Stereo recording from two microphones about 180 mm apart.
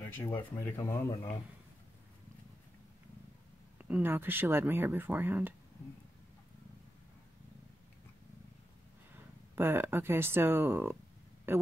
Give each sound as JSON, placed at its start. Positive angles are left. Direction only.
{"t": 0.0, "sound": "speech", "side_deg": 25}
{"t": 0.4, "sound": "speech", "side_deg": 10}
{"t": 3.7, "sound": "speech", "side_deg": -10}
{"t": 9.1, "sound": "speech", "side_deg": -15}